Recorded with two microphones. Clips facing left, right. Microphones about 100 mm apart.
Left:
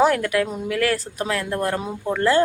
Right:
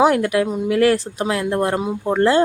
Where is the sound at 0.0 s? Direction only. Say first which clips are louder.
Right 3 dB; 20° right (ahead or behind).